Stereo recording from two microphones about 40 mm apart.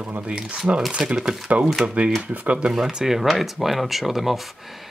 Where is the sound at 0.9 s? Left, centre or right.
Right.